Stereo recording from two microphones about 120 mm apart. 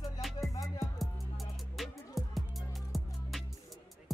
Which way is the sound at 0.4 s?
30° left (ahead or behind).